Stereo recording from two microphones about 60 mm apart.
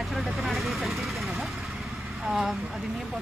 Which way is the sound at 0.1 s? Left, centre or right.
Centre.